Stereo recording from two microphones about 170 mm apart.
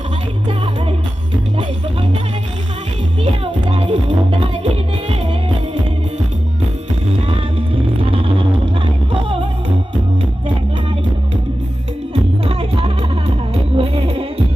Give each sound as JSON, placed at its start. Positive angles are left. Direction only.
{"t": 3.4, "sound": "music", "side_deg": -35}
{"t": 8.0, "sound": "a sound", "side_deg": -30}
{"t": 12.1, "sound": "music", "side_deg": -35}